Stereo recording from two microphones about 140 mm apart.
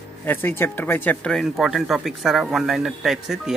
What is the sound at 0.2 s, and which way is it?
Speech, 15° left (ahead or behind).